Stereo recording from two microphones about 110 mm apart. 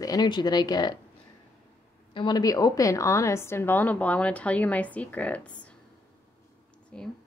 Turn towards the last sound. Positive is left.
turn(degrees=10)  # may be behind; listen again after turning